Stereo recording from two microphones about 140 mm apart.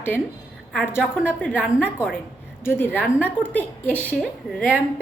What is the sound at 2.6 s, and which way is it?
A woman's voice, 15° left (ahead or behind).